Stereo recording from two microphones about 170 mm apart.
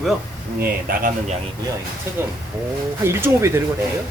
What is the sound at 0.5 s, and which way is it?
Speech, 55° right (ahead or behind).